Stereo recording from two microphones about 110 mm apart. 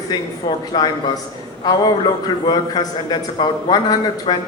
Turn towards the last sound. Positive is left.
turn(degrees=45)  # may be behind; listen again after turning